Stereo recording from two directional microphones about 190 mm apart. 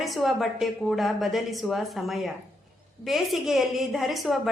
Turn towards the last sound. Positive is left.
turn(degrees=0)  # may be behind; listen again after turning